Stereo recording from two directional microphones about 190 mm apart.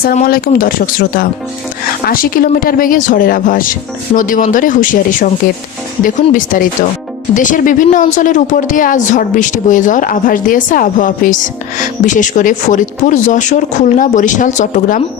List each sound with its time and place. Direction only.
0.0 s a woman's voice: 50° left (ahead or behind)
6.3 s a woman's voice: 45° left (ahead or behind)